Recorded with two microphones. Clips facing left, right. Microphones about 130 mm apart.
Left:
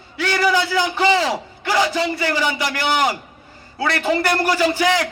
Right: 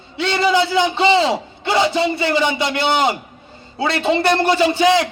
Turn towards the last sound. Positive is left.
turn(degrees=-25)  # may be behind; listen again after turning